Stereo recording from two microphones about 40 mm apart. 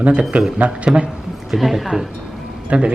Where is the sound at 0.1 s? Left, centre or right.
Right.